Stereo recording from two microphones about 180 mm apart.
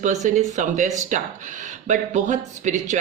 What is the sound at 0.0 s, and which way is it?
Speech, 40° right (ahead or behind).